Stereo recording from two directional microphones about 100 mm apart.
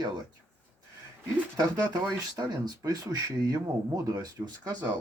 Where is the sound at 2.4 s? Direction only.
40° right (ahead or behind).